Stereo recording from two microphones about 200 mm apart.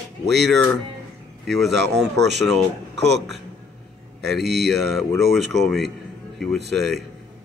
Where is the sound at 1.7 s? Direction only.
60° right (ahead or behind).